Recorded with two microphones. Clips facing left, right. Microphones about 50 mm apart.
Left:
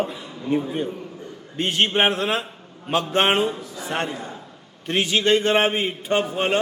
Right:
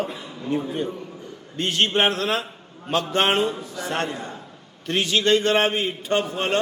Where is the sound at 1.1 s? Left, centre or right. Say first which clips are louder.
Left 2 dB; centre.